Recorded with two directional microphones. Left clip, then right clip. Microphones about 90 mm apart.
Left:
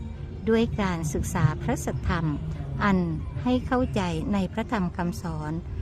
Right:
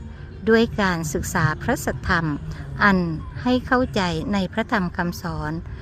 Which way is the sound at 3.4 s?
35° right (ahead or behind).